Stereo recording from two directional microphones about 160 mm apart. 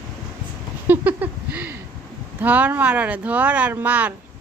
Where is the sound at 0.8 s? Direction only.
10° right (ahead or behind).